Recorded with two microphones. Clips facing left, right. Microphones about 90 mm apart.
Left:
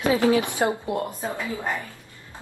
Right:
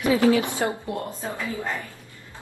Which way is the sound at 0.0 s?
20° left (ahead or behind).